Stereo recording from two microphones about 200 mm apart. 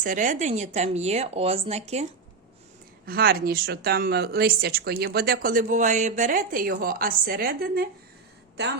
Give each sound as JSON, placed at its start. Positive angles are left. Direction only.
{"t": 0.0, "sound": "speech", "side_deg": -40}
{"t": 3.1, "sound": "speech", "side_deg": -50}